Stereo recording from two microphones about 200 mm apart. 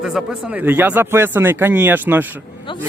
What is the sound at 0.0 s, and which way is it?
A man's voice, 5° right (ahead or behind).